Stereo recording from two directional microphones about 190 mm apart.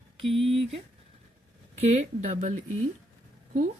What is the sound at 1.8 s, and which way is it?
Speech, 35° right (ahead or behind).